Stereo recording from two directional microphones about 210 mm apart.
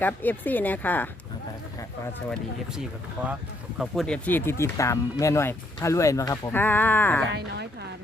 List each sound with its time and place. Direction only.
0.0 s speech: 10° left (ahead or behind)
3.8 s speech: centre (ahead or behind)
7.3 s a woman's voice: 50° right (ahead or behind)